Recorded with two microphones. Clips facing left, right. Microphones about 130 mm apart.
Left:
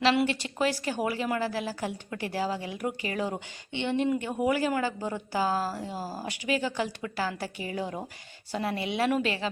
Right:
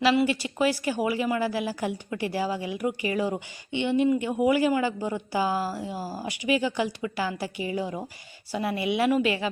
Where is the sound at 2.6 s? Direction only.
45° left (ahead or behind).